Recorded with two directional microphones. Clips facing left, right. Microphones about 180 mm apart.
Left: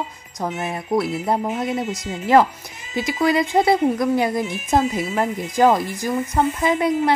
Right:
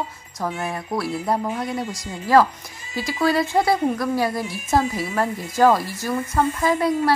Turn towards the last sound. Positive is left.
turn(degrees=20)  # may be behind; listen again after turning